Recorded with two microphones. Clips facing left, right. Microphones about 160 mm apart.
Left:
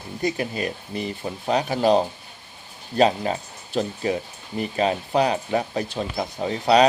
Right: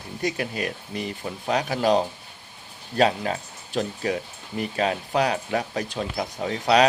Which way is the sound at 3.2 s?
5° left (ahead or behind).